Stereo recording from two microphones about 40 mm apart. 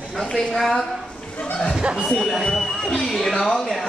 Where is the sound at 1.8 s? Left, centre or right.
Right.